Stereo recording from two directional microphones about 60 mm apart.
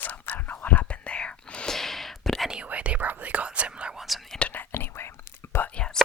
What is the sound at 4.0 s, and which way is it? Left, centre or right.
Whispering, centre.